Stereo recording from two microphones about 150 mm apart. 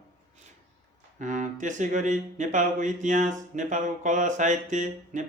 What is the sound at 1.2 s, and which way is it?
Speech, 55° right (ahead or behind).